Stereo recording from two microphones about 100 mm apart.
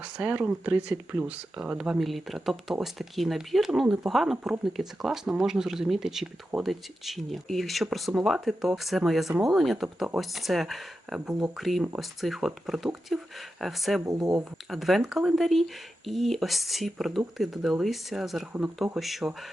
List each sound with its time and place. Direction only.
0.0 s speech: 10° right (ahead or behind)
14.0 s speech: 35° right (ahead or behind)
14.7 s speech: centre (ahead or behind)